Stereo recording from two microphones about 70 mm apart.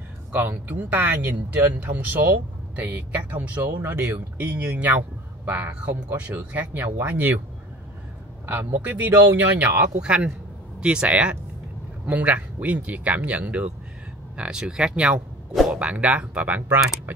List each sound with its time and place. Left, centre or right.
0.3 s speech: right
5.8 s speech: centre
8.5 s speech: right
9.8 s speech: centre